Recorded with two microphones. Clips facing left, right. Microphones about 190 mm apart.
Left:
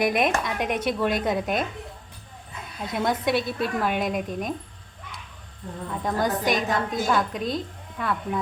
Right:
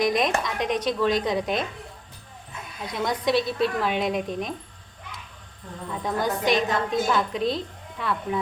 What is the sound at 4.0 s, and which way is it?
Speech, centre (ahead or behind).